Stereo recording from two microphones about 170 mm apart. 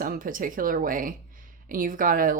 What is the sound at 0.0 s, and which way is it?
A woman's voice, 55° right (ahead or behind).